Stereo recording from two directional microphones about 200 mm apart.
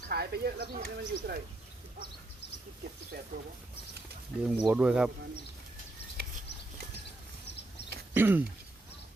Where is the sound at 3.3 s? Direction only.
40° right (ahead or behind).